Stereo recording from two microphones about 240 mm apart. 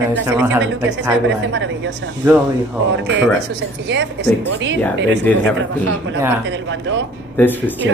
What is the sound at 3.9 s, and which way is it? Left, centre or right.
Speech, right.